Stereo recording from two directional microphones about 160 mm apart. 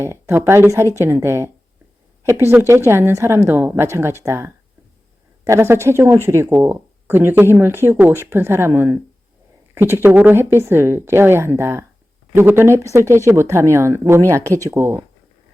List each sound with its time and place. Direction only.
0.0 s speech: 15° right (ahead or behind)